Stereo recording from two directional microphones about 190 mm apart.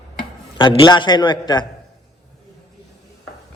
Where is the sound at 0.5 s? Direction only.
25° left (ahead or behind).